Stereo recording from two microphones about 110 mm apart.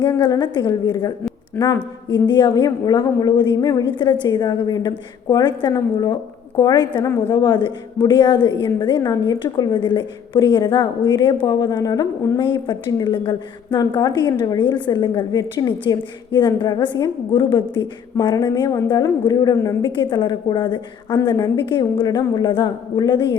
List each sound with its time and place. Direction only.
0.2 s a woman's voice: 45° left (ahead or behind)
2.1 s a woman's voice: 45° left (ahead or behind)